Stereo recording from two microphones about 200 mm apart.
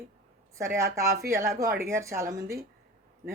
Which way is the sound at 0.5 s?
15° right (ahead or behind).